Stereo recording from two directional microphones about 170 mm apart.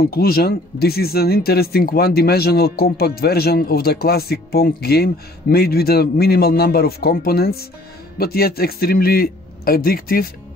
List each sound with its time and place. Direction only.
0.0 s speech: 65° left (ahead or behind)